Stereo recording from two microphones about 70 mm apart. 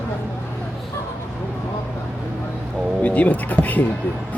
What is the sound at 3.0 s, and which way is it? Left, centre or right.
Speech, left.